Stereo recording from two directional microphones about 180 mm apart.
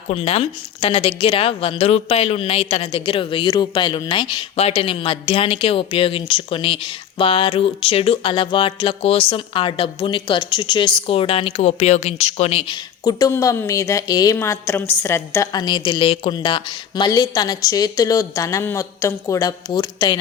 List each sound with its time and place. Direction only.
0.1 s a woman's voice: 35° left (ahead or behind)
13.1 s a woman's voice: 20° left (ahead or behind)